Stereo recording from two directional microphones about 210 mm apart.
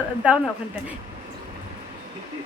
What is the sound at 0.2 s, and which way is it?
Speech, 5° right (ahead or behind).